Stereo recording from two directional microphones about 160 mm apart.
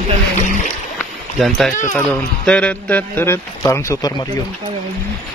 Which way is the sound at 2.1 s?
5° left (ahead or behind).